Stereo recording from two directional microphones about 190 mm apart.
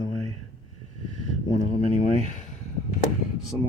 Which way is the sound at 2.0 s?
40° left (ahead or behind).